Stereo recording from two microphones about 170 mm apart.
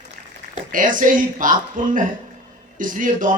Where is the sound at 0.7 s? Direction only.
50° right (ahead or behind).